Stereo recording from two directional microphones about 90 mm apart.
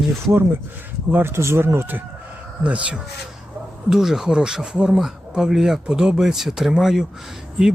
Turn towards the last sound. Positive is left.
turn(degrees=-5)  # may be behind; listen again after turning